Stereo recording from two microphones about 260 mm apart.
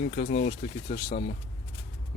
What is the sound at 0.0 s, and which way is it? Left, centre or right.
Speech, left.